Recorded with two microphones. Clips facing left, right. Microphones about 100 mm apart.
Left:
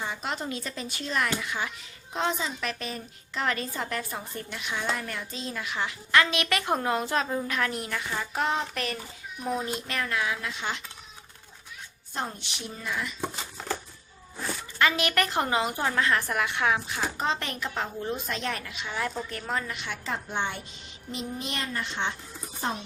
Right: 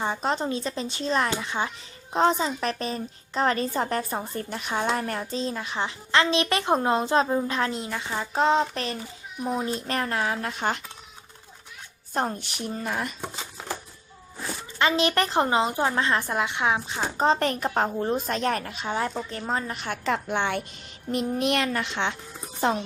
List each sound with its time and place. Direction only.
0.0 s a woman's voice: 35° right (ahead or behind)
12.1 s speech: 45° right (ahead or behind)
14.8 s a woman's voice: 25° right (ahead or behind); by 20.0 s 40° right (ahead or behind)
20.1 s a woman's voice: 75° right (ahead or behind)
21.1 s a child's voice: 60° right (ahead or behind); by 22.8 s 90° right